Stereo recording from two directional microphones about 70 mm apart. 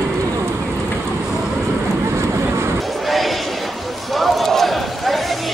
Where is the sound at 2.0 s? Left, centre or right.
Right.